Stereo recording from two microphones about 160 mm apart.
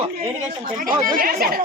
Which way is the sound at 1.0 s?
60° right (ahead or behind).